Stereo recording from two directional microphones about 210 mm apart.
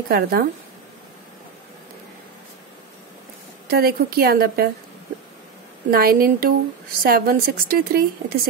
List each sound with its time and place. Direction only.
0.1 s speech: 45° right (ahead or behind)
3.7 s speech: 45° right (ahead or behind)
5.9 s speech: 45° right (ahead or behind)